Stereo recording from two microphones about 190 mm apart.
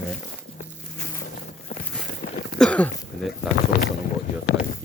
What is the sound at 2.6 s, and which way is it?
Throat clearing, 5° left (ahead or behind).